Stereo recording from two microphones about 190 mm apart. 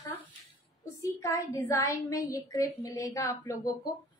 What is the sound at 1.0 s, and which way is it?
A woman's voice, 15° left (ahead or behind).